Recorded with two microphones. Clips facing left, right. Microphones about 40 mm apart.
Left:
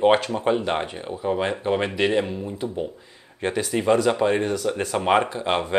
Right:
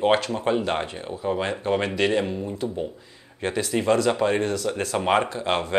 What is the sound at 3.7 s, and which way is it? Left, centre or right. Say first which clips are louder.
Speech: left 1 dB; centre.